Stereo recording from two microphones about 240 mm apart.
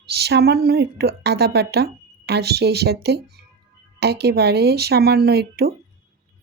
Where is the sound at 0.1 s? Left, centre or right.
Right.